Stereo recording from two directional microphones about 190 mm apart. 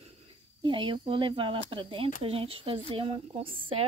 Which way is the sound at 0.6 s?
25° right (ahead or behind).